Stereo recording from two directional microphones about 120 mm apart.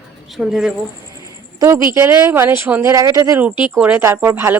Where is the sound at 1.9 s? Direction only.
20° right (ahead or behind).